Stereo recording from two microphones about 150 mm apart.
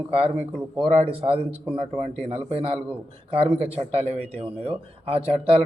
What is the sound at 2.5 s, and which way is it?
Speech, 35° right (ahead or behind).